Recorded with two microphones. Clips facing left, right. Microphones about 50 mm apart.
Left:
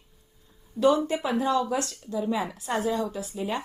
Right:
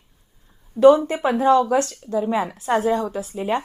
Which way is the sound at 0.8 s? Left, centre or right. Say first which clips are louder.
Right 9 dB; right.